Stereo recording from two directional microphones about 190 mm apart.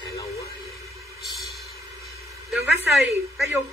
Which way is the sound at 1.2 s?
Centre (ahead or behind).